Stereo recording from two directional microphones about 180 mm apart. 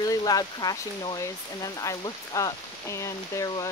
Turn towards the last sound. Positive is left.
turn(degrees=15)  # may be behind; listen again after turning